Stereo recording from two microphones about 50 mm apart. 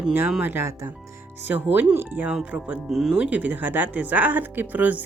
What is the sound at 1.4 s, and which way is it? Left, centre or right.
Speech, right.